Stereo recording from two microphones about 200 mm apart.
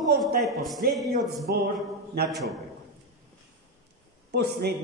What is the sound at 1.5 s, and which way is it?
Speech, 50° right (ahead or behind).